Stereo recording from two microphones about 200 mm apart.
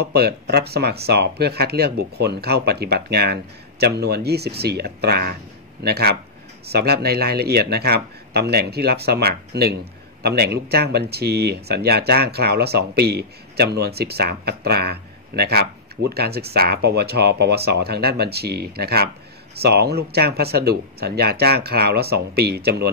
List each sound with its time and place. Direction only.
0.0 s speech: 55° right (ahead or behind)